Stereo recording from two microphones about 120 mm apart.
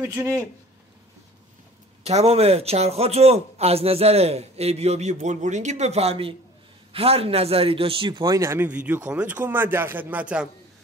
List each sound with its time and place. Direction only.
0.0 s speech: 15° right (ahead or behind)
2.0 s a man's voice: 60° right (ahead or behind)
8.2 s speech: 25° right (ahead or behind)
8.6 s speech: 10° right (ahead or behind)